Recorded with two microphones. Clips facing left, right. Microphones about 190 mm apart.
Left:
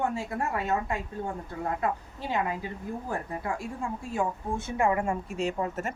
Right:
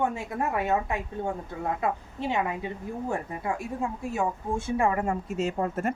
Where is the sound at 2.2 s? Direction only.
20° right (ahead or behind).